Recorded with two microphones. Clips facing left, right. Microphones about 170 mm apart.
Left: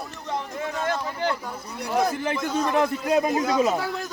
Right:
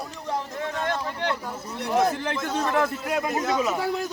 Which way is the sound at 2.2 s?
15° left (ahead or behind).